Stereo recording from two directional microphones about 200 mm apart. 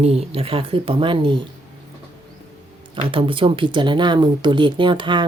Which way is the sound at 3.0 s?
25° right (ahead or behind).